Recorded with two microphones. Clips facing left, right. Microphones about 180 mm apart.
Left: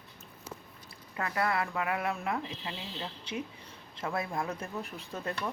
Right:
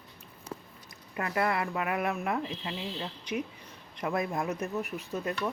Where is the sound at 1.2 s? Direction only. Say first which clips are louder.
Right 2 dB; 20° right (ahead or behind).